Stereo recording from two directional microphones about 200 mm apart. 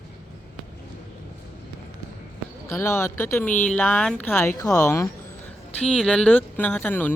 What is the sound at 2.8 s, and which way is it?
Speech, 15° left (ahead or behind).